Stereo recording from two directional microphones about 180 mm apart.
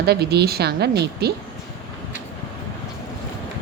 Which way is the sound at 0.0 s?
60° right (ahead or behind).